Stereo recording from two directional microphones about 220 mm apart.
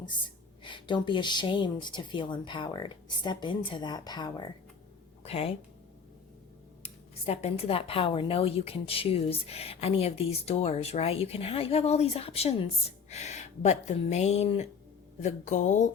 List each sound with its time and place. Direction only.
0.6 s a woman's voice: 20° left (ahead or behind)
6.8 s speech: 25° left (ahead or behind)